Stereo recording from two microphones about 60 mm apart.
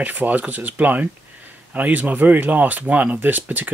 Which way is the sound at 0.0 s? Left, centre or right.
Right.